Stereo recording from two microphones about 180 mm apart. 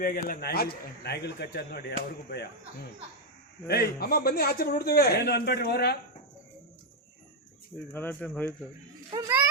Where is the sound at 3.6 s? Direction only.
60° left (ahead or behind).